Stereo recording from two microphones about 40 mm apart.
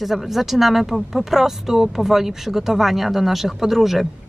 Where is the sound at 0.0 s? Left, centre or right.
Centre.